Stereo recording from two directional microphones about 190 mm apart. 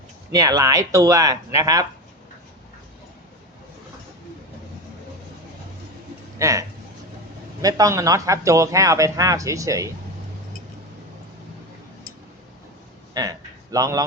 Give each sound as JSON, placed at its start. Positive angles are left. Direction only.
{"t": 0.3, "sound": "a man's voice", "side_deg": -20}
{"t": 6.4, "sound": "a man's voice", "side_deg": -15}
{"t": 13.1, "sound": "a sound", "side_deg": -20}